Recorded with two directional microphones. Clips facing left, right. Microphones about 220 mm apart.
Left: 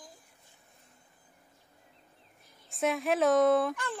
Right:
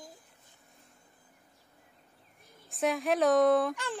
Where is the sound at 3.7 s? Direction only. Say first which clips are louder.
Even; 15° right (ahead or behind).